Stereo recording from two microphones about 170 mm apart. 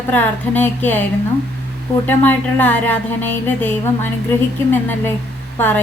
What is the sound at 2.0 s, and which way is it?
A woman's voice, 10° left (ahead or behind).